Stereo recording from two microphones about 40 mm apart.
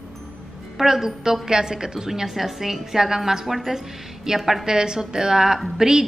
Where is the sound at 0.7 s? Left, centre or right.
Centre.